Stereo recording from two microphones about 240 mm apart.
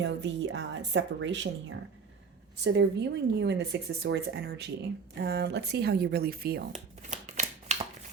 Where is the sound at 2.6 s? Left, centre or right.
Right.